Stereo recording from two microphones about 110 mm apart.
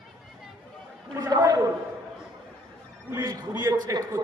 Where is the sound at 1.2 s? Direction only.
35° right (ahead or behind).